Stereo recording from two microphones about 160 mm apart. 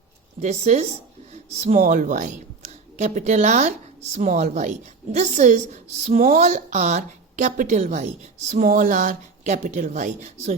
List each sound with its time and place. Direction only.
0.3 s speech: 45° right (ahead or behind)